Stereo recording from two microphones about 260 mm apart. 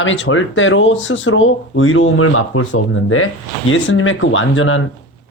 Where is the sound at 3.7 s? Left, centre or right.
Left.